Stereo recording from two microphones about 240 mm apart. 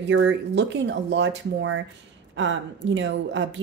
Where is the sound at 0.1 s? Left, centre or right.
Right.